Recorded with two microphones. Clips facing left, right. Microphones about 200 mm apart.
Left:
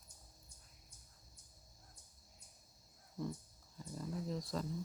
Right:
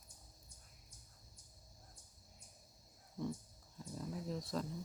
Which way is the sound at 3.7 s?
Centre (ahead or behind).